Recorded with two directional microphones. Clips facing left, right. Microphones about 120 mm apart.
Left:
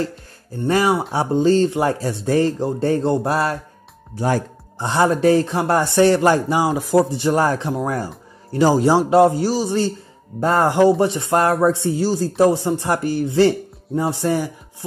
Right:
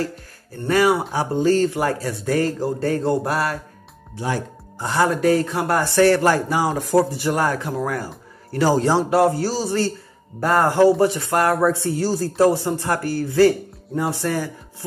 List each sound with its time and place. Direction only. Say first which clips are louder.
0.7 s a man's voice: even; 25° left (ahead or behind)
4.7 s a man's voice: left 2 dB; 25° left (ahead or behind)